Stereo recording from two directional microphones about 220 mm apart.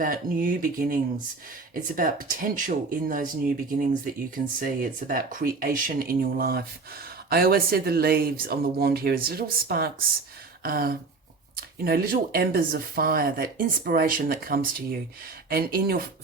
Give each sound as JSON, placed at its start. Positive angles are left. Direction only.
{"t": 0.0, "sound": "speech", "side_deg": -40}
{"t": 10.6, "sound": "a sound", "side_deg": -45}
{"t": 11.5, "sound": "speech", "side_deg": -40}